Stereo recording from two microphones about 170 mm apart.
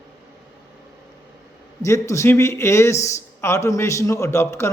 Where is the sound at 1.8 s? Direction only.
15° left (ahead or behind).